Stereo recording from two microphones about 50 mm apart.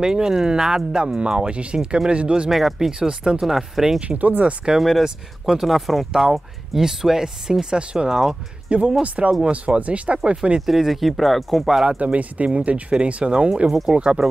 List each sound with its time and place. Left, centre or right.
0.0 s speech: centre
2.5 s speech: centre
2.9 s speech: centre
4.0 s speech: right
4.7 s speech: centre
9.0 s speech: right
10.6 s speech: centre
12.0 s speech: right